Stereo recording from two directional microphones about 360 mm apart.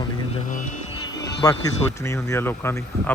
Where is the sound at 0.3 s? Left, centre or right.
Left.